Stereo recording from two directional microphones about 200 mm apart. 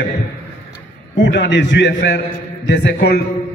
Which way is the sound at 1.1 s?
65° left (ahead or behind).